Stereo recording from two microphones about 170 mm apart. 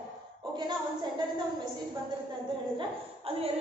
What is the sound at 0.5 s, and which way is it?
Speech, 25° right (ahead or behind).